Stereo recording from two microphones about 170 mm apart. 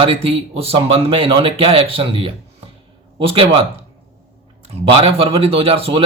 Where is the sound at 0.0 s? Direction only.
35° right (ahead or behind).